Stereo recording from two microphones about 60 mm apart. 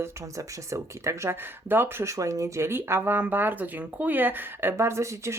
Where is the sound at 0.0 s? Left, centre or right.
Right.